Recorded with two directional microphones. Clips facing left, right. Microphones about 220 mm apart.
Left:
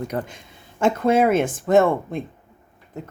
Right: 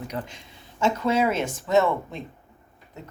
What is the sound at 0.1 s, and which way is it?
Speech, 50° left (ahead or behind).